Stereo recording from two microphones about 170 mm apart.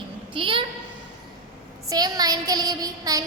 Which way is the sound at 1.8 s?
20° right (ahead or behind).